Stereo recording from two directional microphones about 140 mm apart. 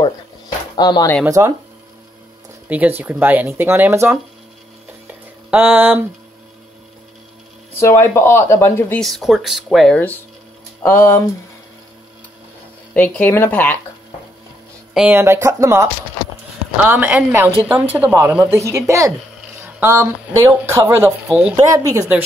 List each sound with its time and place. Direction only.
0.7 s speech: 30° left (ahead or behind)
1.4 s speech: 25° right (ahead or behind)
2.7 s a woman's voice: 10° right (ahead or behind)
5.5 s a woman's voice: 10° right (ahead or behind)
7.8 s speech: 20° left (ahead or behind)
9.0 s speech: centre (ahead or behind)
9.9 s speech: 15° left (ahead or behind)
12.9 s speech: 10° left (ahead or behind)
15.0 s a woman's voice: 15° right (ahead or behind)
19.6 s a sound: 20° right (ahead or behind)
20.6 s a woman's voice: 20° right (ahead or behind)
21.5 s speech: 25° right (ahead or behind)